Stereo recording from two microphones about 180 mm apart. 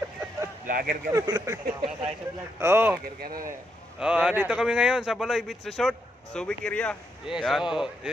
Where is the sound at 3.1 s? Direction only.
55° right (ahead or behind).